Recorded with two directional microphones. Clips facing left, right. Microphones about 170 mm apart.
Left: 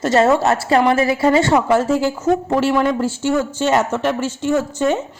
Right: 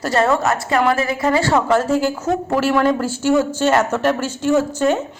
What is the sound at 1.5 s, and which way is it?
Speech, 10° left (ahead or behind).